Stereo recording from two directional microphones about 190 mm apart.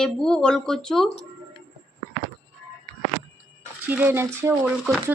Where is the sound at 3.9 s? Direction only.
10° right (ahead or behind).